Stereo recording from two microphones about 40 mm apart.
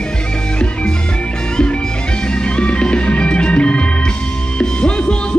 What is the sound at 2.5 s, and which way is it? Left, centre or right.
Music, left.